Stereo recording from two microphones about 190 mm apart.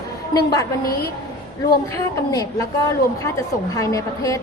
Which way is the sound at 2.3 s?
20° left (ahead or behind).